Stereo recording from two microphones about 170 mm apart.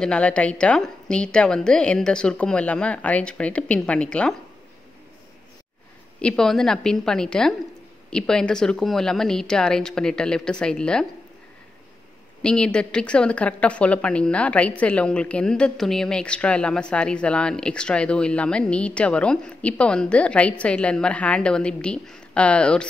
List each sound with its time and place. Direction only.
0.0 s a woman's voice: 5° left (ahead or behind)
6.2 s a woman's voice: 5° left (ahead or behind)
12.4 s speech: 5° left (ahead or behind)